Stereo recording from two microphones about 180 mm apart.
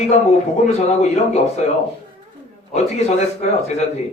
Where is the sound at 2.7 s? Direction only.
40° left (ahead or behind).